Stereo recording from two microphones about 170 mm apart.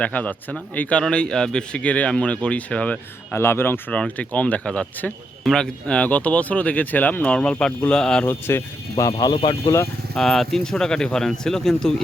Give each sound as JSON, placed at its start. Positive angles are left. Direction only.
{"t": 0.0, "sound": "speech", "side_deg": 10}
{"t": 9.3, "sound": "speech", "side_deg": 30}
{"t": 10.2, "sound": "speech", "side_deg": 0}